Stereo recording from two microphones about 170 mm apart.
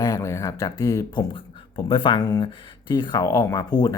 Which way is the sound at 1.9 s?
30° left (ahead or behind).